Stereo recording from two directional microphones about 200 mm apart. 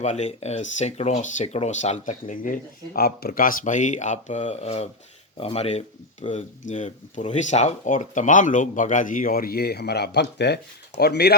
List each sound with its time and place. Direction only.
0.0 s speech: 35° left (ahead or behind); by 11.3 s 50° left (ahead or behind)